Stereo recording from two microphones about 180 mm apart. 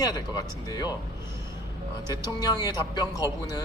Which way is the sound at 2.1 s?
20° left (ahead or behind).